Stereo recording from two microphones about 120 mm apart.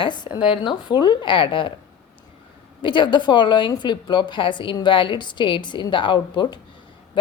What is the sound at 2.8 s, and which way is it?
A woman's voice, 40° left (ahead or behind).